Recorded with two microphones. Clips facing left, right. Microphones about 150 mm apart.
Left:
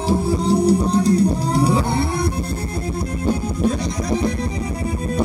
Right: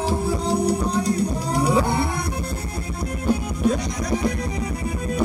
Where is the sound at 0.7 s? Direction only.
30° left (ahead or behind).